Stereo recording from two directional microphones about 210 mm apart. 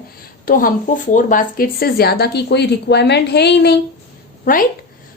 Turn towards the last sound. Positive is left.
turn(degrees=40)  # may be behind; listen again after turning